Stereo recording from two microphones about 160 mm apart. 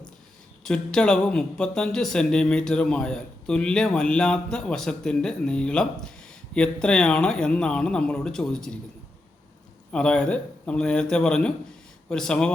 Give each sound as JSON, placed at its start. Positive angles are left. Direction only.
{"t": 0.6, "sound": "a man's voice", "side_deg": 5}
{"t": 9.9, "sound": "a man's voice", "side_deg": 5}